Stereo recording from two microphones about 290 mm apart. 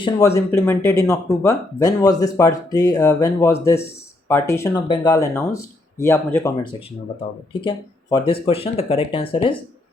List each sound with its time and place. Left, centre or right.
0.0 s speech: centre
7.6 s speech: centre